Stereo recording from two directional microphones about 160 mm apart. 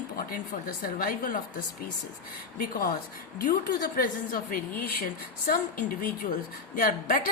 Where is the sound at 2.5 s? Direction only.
65° left (ahead or behind).